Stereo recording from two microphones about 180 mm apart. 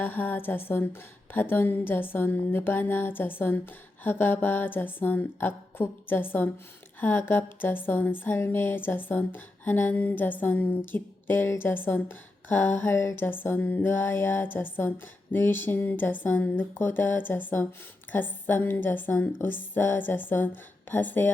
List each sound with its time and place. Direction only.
0.0 s speech: 10° left (ahead or behind)